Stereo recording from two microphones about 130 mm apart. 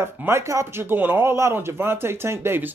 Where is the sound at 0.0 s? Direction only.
20° right (ahead or behind).